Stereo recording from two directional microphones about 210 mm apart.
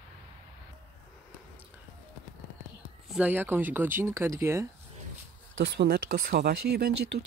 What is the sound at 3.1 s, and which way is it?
Speech, 10° right (ahead or behind).